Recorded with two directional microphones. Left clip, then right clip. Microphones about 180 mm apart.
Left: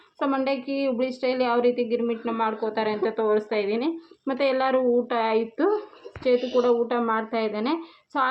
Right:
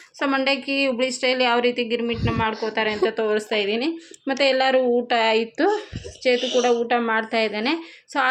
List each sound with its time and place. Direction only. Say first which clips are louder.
0.2 s speech: right 4 dB; 5° right (ahead or behind)
6.3 s a woman's voice: even; 35° right (ahead or behind)
6.8 s speech: right 4 dB; 5° right (ahead or behind)